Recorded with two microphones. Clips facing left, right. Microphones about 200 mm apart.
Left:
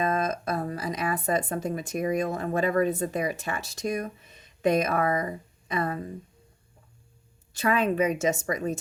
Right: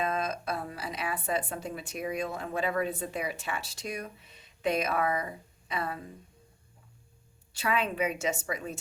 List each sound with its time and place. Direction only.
0.0 s a woman's voice: 45° left (ahead or behind)
7.5 s a woman's voice: 45° left (ahead or behind)